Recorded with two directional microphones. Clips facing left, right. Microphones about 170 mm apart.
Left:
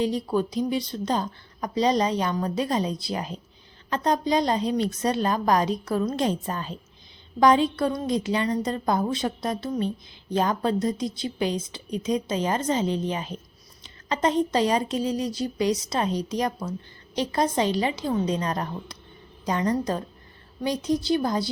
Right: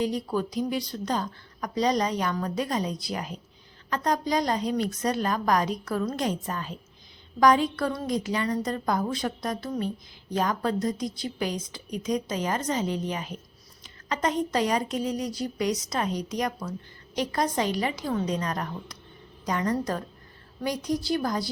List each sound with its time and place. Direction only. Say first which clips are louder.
0.0 s a woman's voice: left 3 dB; 25° left (ahead or behind)